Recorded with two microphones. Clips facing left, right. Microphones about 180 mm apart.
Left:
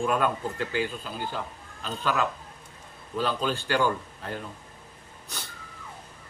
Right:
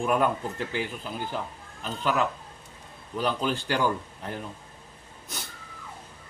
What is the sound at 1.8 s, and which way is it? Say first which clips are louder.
Speech: right 1 dB; 15° right (ahead or behind).